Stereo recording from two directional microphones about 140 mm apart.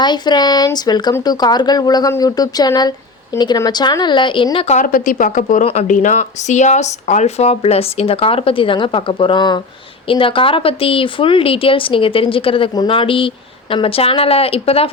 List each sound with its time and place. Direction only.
0.0 s speech: 30° left (ahead or behind)
4.8 s speech: 75° left (ahead or behind); by 14.8 s 45° left (ahead or behind)